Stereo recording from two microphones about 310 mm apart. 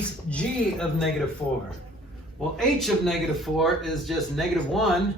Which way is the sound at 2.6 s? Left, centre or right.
Centre.